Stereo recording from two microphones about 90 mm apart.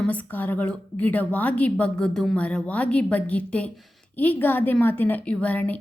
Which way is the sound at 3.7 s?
Centre (ahead or behind).